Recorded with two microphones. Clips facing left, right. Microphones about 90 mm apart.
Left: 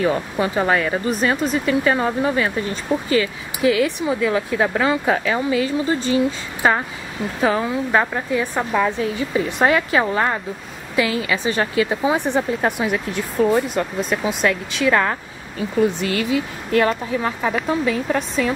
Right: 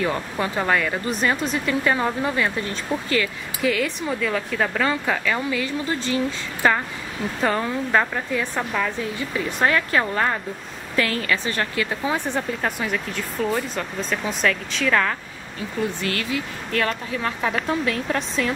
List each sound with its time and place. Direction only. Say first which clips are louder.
0.0 s speech: left 4 dB; 15° left (ahead or behind)
7.3 s speech: left 4 dB; 5° left (ahead or behind)
17.4 s speech: left 3 dB; 5° left (ahead or behind)